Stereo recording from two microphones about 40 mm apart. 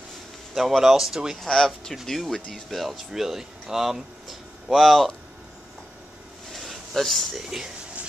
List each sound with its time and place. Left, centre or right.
0.6 s speech: centre
1.5 s speech: centre
3.0 s speech: centre
6.5 s a sound: centre
7.4 s speech: centre